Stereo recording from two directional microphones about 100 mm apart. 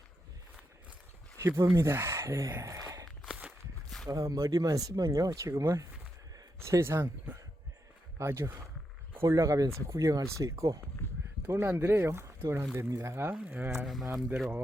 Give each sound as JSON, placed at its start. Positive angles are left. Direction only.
{"t": 1.4, "sound": "speech", "side_deg": -30}
{"t": 3.2, "sound": "walk", "side_deg": -10}
{"t": 4.1, "sound": "speech", "side_deg": -35}
{"t": 11.4, "sound": "speech", "side_deg": -20}
{"t": 13.3, "sound": "speech", "side_deg": -15}
{"t": 13.8, "sound": "speech", "side_deg": 0}